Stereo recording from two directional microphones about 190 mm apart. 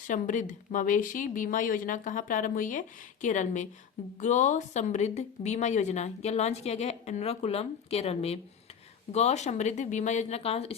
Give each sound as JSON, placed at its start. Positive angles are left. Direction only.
{"t": 0.1, "sound": "speech", "side_deg": 40}